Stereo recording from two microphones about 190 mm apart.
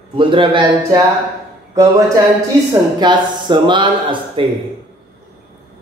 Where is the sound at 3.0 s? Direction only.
25° right (ahead or behind).